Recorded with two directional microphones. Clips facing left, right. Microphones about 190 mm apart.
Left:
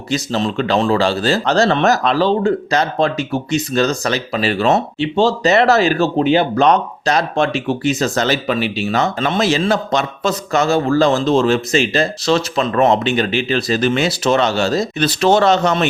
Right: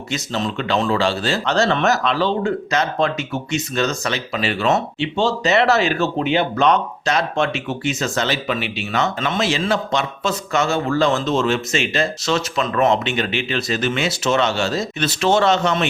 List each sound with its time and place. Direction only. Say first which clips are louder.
0.1 s speech: left 5 dB; 35° left (ahead or behind)